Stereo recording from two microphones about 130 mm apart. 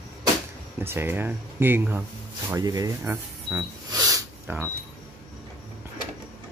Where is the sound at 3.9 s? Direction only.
30° right (ahead or behind).